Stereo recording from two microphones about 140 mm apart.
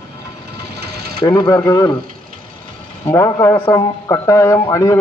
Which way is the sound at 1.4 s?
25° left (ahead or behind).